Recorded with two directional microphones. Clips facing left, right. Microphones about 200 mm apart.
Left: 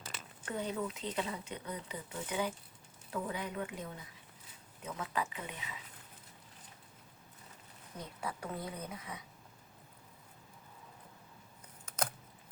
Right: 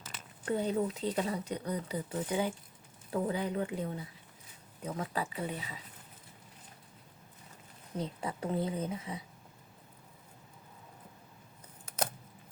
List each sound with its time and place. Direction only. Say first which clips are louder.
0.4 s speech: right 6 dB; 35° right (ahead or behind)
7.9 s a woman's voice: right 6 dB; 25° right (ahead or behind)